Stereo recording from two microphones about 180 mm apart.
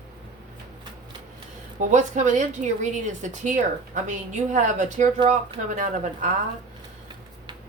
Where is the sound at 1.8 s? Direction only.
40° right (ahead or behind).